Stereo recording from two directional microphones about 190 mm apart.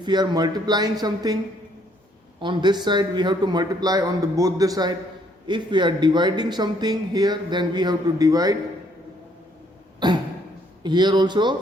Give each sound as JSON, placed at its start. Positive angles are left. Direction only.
{"t": 0.0, "sound": "a man's voice", "side_deg": -20}
{"t": 2.4, "sound": "a man's voice", "side_deg": -25}
{"t": 10.0, "sound": "a man's voice", "side_deg": -25}